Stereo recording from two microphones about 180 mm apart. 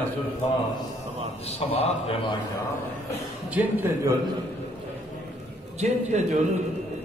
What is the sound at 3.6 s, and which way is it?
Speech, 10° right (ahead or behind).